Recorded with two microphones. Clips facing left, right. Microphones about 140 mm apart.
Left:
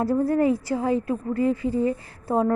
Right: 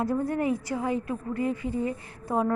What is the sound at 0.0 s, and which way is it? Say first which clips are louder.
A woman's voice: left 6 dB; 35° left (ahead or behind).